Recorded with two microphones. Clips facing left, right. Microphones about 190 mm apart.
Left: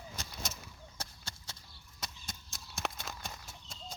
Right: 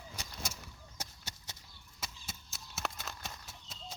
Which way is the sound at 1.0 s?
15° right (ahead or behind).